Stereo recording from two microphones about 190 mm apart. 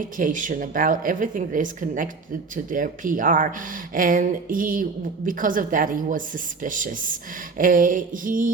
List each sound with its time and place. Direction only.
0.0 s a woman's voice: 45° right (ahead or behind)